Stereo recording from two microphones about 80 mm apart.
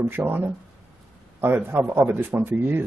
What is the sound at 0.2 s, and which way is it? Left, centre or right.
Speech, right.